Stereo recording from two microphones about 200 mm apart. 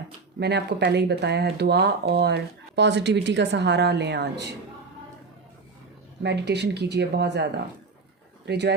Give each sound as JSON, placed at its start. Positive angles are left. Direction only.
{"t": 0.3, "sound": "speech", "side_deg": -55}
{"t": 6.2, "sound": "speech", "side_deg": -60}